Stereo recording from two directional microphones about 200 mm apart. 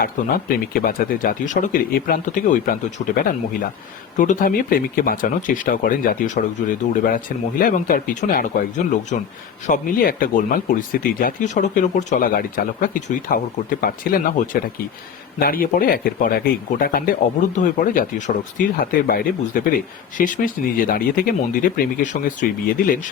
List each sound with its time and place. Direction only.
0.0 s speech: 45° left (ahead or behind)